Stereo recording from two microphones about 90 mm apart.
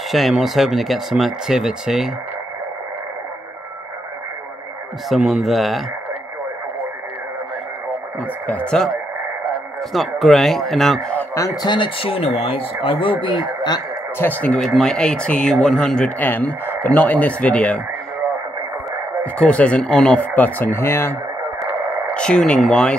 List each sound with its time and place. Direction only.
0.1 s speech: centre (ahead or behind)
5.1 s speech: 5° right (ahead or behind)
8.2 s a man's voice: 15° left (ahead or behind)
11.6 s speech: 65° left (ahead or behind)
14.1 s speech: 20° left (ahead or behind)
14.6 s speech: 5° left (ahead or behind)
19.3 s speech: 10° left (ahead or behind)
22.1 s speech: 10° left (ahead or behind)